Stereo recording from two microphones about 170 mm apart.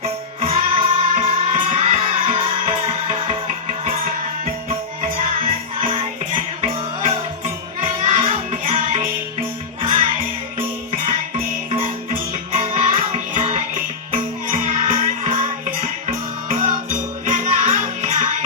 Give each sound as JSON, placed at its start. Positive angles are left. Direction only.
{"t": 0.0, "sound": "music", "side_deg": -35}
{"t": 5.8, "sound": "music", "side_deg": -30}
{"t": 12.5, "sound": "music", "side_deg": -40}